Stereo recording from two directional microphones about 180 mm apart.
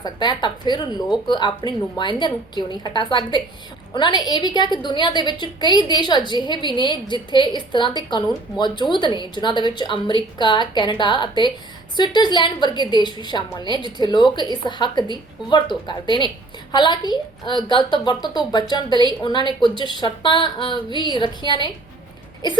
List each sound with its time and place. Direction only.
0.0 s a woman's voice: 25° left (ahead or behind)